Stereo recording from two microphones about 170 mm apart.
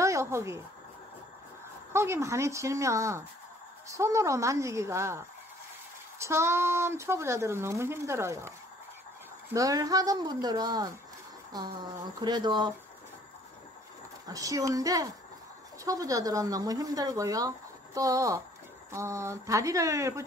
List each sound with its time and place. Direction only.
0.0 s a sound: 15° right (ahead or behind)
1.9 s speech: 15° right (ahead or behind)
14.3 s speech: 20° right (ahead or behind)